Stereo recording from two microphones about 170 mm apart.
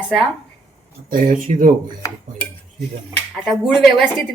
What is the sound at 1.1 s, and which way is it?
Speech, 50° right (ahead or behind).